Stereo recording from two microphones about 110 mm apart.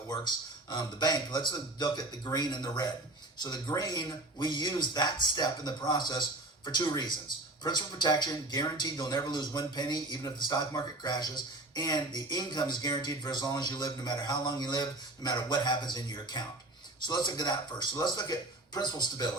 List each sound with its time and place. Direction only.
0.1 s speech: 40° left (ahead or behind)